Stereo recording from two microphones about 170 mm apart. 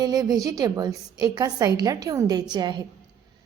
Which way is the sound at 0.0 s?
20° right (ahead or behind).